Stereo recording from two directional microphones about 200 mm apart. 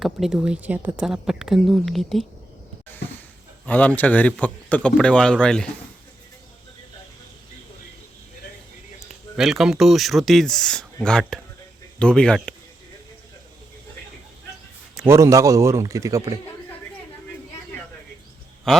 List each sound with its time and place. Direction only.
0.0 s speech: centre (ahead or behind)
3.7 s speech: 10° left (ahead or behind)
9.4 s speech: centre (ahead or behind)
14.9 s a man's voice: 10° right (ahead or behind)
18.7 s speech: centre (ahead or behind)